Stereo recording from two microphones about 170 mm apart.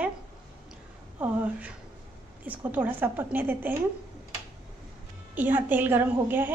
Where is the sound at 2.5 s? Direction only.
10° right (ahead or behind).